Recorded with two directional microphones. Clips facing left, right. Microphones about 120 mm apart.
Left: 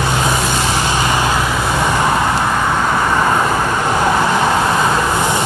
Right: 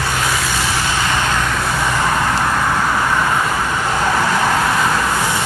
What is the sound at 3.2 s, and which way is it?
Vehicle, 25° left (ahead or behind).